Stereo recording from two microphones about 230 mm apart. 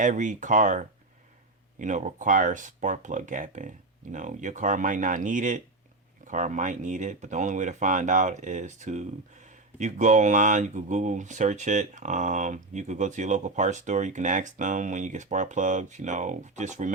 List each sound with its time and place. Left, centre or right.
0.0 s speech: right